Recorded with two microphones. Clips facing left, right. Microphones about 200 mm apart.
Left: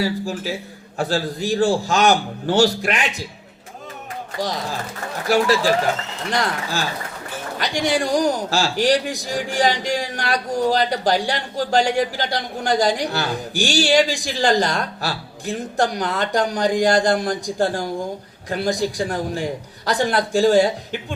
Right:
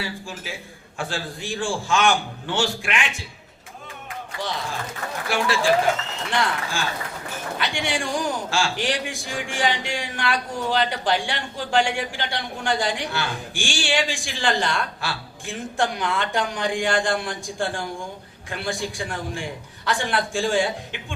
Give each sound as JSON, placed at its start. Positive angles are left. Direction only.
{"t": 0.0, "sound": "a man's voice", "side_deg": 40}
{"t": 4.4, "sound": "a man's voice", "side_deg": 40}